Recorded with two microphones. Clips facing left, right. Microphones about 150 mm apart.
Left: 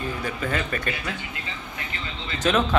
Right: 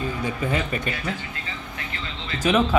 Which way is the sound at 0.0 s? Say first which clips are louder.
Right 2 dB; 20° right (ahead or behind).